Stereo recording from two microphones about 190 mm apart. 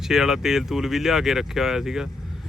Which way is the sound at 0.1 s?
5° right (ahead or behind).